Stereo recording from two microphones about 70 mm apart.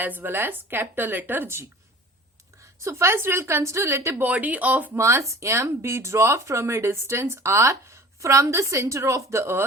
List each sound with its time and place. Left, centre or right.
0.0 s a woman's voice: right
2.8 s a woman's voice: right
4.1 s a woman's voice: right
4.9 s speech: right
9.3 s a woman's voice: right